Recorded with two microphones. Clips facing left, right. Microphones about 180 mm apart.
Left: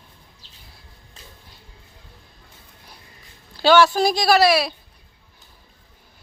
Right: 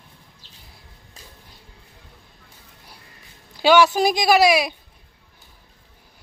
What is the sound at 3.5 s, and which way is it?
Speech, 15° right (ahead or behind).